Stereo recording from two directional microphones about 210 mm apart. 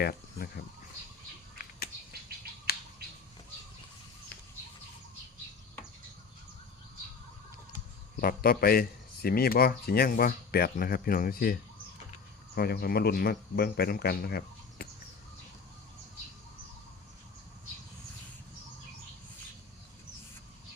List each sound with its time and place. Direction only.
0.0 s cricket: 45° left (ahead or behind)
2.7 s squawk: 45° left (ahead or behind)
8.2 s a man's voice: 45° left (ahead or behind)
12.5 s a man's voice: 50° left (ahead or behind)